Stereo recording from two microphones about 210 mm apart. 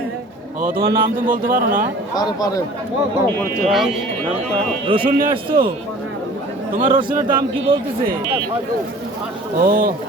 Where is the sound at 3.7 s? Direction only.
Centre (ahead or behind).